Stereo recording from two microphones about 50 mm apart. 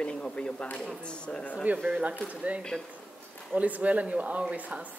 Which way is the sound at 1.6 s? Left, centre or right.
Right.